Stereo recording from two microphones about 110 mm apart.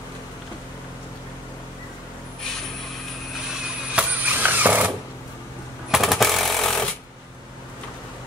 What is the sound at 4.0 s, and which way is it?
Mechanisms, 15° right (ahead or behind).